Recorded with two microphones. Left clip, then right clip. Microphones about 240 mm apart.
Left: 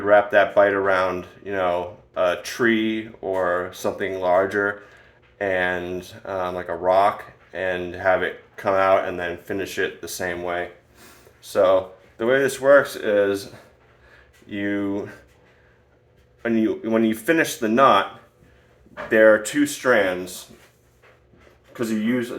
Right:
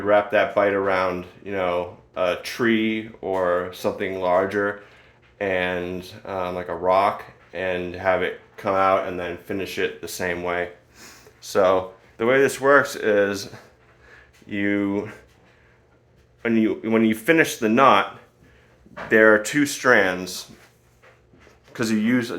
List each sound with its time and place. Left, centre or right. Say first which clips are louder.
0.0 s speech: left 2 dB; right
8.7 s speech: left 1 dB; centre
9.1 s speech: left 1 dB; centre
10.0 s speech: right 1 dB; right
14.5 s speech: right 2 dB; right
16.4 s speech: even; right
19.1 s speech: even; right